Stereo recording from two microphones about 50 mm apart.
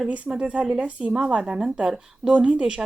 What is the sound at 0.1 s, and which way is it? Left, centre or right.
Speech, right.